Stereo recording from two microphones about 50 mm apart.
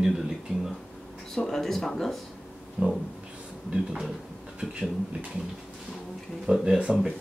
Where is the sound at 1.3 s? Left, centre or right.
Centre.